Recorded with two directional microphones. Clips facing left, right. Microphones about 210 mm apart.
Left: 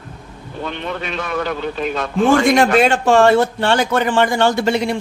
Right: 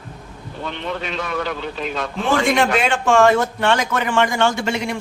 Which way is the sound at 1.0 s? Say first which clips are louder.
Left 4 dB; 55° left (ahead or behind).